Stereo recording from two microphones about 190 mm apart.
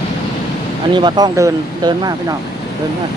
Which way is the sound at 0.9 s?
20° right (ahead or behind).